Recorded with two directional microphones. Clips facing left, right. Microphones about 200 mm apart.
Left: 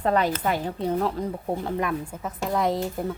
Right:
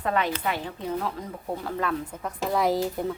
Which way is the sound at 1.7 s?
15° left (ahead or behind).